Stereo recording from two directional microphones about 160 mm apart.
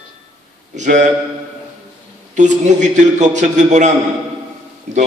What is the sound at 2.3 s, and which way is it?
A man's voice, 50° right (ahead or behind).